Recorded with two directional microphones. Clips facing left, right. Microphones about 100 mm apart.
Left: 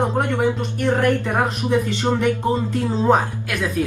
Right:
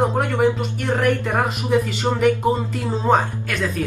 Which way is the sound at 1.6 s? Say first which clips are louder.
Even; 10° right (ahead or behind).